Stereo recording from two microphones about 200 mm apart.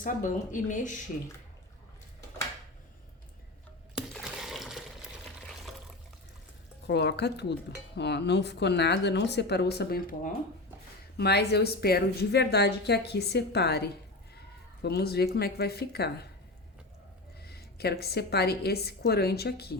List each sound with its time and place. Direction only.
0.0 s speech: 40° left (ahead or behind)
3.9 s a sound: 5° right (ahead or behind)
6.8 s speech: 55° left (ahead or behind)
11.2 s speech: 55° left (ahead or behind)
17.4 s a woman's voice: 50° left (ahead or behind)